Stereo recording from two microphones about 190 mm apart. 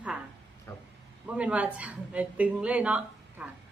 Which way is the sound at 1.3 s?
5° right (ahead or behind).